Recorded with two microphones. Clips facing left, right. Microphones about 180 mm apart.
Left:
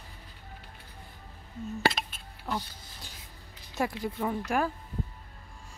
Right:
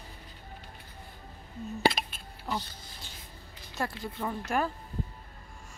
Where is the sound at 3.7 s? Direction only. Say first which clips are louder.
Left 4 dB; 15° left (ahead or behind).